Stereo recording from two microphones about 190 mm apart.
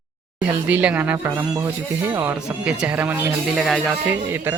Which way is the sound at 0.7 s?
10° right (ahead or behind).